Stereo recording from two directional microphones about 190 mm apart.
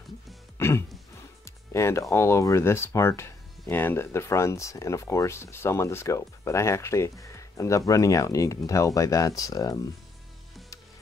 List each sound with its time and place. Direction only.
0.6 s music: 15° left (ahead or behind)
1.4 s speech: 15° left (ahead or behind)